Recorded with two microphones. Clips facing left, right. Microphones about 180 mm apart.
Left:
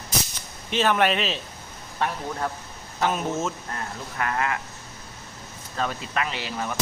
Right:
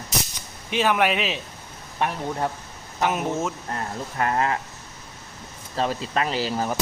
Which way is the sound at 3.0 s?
15° right (ahead or behind).